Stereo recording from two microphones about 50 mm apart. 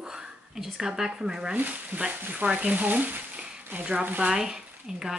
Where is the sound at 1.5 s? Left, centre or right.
Right.